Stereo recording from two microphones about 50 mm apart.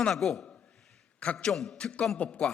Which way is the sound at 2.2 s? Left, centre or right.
Left.